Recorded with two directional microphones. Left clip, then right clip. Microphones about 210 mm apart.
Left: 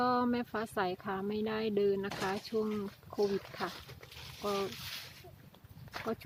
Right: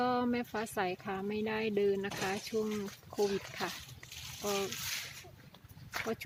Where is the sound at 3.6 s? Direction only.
5° left (ahead or behind).